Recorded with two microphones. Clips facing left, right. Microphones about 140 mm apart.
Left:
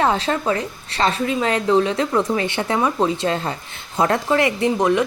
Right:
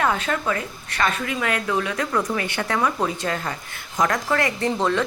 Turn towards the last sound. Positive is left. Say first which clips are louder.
# left 4 dB
turn(degrees=15)  # may be behind; listen again after turning